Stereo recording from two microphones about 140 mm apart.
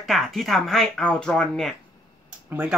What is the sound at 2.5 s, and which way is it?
Speech, 10° right (ahead or behind).